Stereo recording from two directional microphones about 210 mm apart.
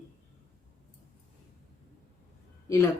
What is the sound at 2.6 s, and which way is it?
Speech, 15° left (ahead or behind).